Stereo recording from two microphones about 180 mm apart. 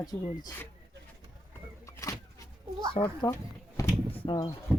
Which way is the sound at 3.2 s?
20° left (ahead or behind).